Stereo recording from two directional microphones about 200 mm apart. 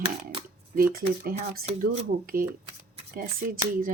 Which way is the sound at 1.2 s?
45° right (ahead or behind).